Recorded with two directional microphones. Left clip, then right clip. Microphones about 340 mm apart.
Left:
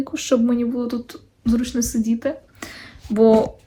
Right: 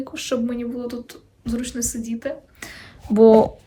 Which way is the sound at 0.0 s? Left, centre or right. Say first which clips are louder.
Left 5 dB; centre.